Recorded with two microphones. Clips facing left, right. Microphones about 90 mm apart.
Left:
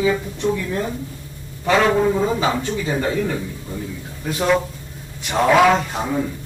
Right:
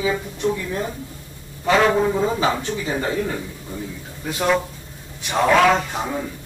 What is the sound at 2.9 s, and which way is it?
Speech, 15° right (ahead or behind).